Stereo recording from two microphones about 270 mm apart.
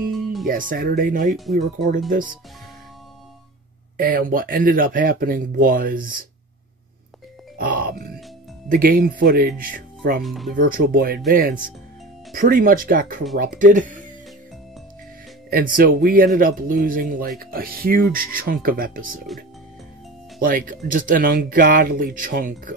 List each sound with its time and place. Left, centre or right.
0.1 s music: centre
0.5 s speech: right
1.3 s speech: centre
1.6 s speech: right
3.9 s speech: right
7.5 s music: right
8.6 s speech: right
10.2 s speech: centre
10.5 s speech: right
15.5 s speech: right
20.3 s speech: right